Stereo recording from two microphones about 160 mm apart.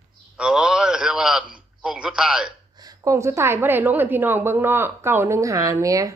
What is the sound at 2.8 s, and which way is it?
A woman's voice, 20° right (ahead or behind).